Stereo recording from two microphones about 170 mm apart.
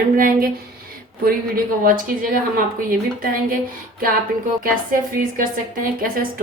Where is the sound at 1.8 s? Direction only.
55° right (ahead or behind).